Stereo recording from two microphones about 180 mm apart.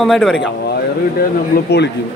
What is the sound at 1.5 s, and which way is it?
Speech, 60° left (ahead or behind).